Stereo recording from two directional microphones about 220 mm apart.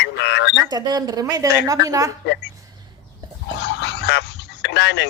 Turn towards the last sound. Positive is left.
turn(degrees=50)  # may be behind; listen again after turning